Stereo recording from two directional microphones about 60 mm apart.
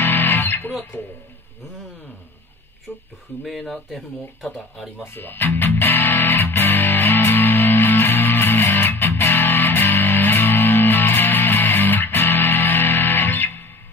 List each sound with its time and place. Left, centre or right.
0.0 s music: left
3.4 s speech: centre
5.0 s speech: left
5.6 s music: left